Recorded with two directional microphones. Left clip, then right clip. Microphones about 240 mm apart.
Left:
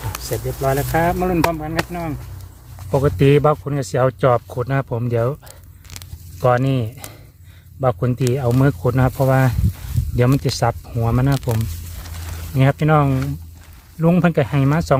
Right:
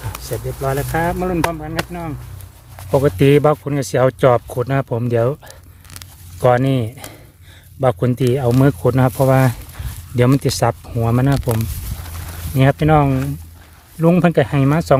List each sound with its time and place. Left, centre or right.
0.1 s speech: centre
3.2 s speech: centre
5.5 s a sound: centre
6.4 s speech: right
12.8 s speech: right